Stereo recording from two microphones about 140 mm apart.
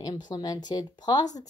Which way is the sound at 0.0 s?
30° left (ahead or behind).